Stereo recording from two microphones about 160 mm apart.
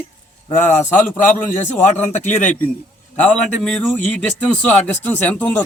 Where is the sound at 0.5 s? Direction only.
50° left (ahead or behind).